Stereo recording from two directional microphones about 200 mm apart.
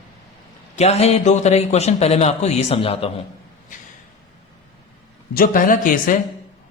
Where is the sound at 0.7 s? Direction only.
30° left (ahead or behind).